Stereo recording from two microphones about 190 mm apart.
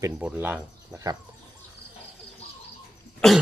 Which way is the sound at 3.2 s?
Centre (ahead or behind).